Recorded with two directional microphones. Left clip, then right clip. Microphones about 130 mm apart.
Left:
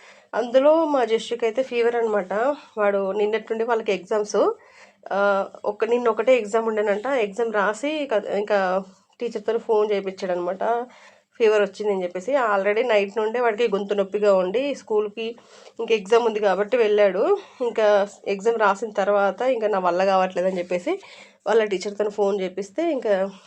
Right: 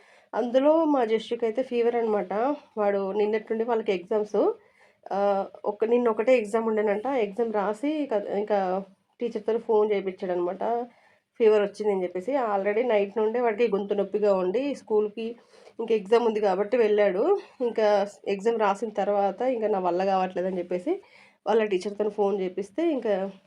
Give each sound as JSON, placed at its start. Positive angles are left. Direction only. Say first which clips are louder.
{"t": 0.3, "sound": "a woman's voice", "louder": "left 4 dB", "side_deg": 20}